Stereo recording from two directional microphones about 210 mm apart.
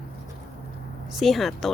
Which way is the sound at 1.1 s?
Centre (ahead or behind).